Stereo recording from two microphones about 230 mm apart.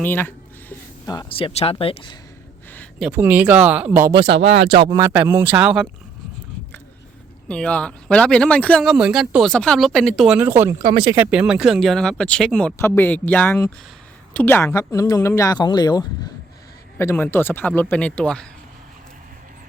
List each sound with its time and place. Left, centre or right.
0.0 s speech: centre; by 2.1 s left
3.1 s speech: centre
4.1 s speech: right
4.6 s speech: right; by 5.9 s centre
7.4 s speech: centre
11.2 s speech: centre